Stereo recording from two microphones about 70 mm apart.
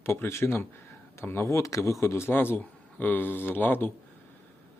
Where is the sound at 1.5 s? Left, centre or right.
Left.